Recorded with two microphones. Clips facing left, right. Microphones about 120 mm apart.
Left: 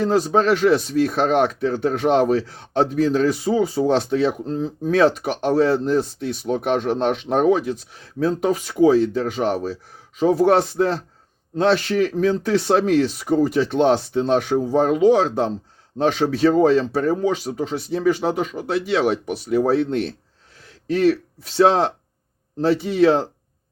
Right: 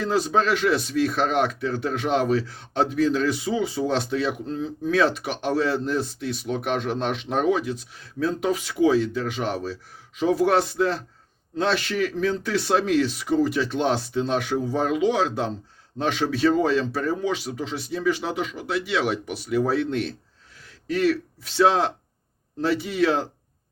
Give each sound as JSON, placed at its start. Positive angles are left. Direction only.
{"t": 0.0, "sound": "speech", "side_deg": 45}
{"t": 22.8, "sound": "speech", "side_deg": 40}
{"t": 23.0, "sound": "speech", "side_deg": 25}